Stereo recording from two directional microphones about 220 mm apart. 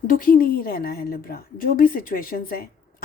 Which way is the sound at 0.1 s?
40° left (ahead or behind).